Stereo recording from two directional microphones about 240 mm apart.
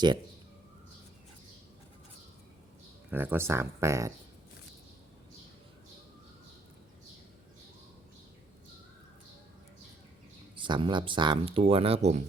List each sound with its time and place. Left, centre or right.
3.1 s speech: centre
10.5 s speech: right